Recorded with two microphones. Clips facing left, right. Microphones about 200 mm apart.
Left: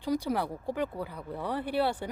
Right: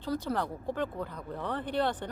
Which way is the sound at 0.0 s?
10° left (ahead or behind).